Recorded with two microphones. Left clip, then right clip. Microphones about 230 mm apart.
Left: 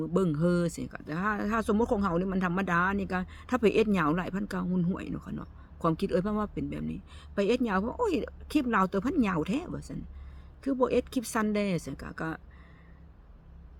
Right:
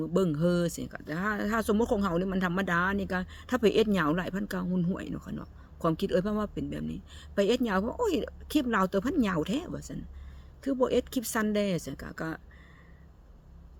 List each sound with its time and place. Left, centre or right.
0.0 s speech: centre